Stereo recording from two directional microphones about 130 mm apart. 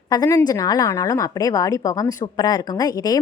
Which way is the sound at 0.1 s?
30° left (ahead or behind).